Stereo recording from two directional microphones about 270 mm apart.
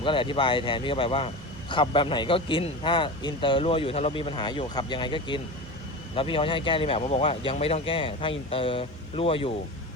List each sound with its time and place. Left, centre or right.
0.0 s a man's voice: centre